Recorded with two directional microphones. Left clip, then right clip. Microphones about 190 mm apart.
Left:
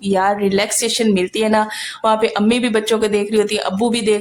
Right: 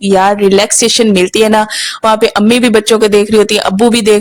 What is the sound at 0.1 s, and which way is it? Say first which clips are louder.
Speech: right 8 dB; 40° right (ahead or behind).